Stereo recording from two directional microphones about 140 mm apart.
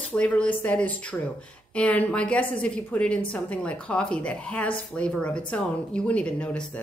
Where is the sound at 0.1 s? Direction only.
10° left (ahead or behind).